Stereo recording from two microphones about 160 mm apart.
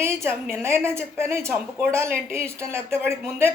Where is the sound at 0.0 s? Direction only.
15° right (ahead or behind).